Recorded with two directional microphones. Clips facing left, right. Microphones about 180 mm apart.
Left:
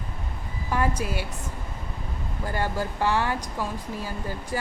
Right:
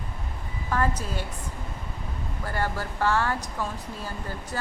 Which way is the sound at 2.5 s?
15° left (ahead or behind).